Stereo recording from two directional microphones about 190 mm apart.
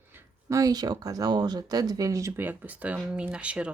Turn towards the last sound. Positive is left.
turn(degrees=-5)  # may be behind; listen again after turning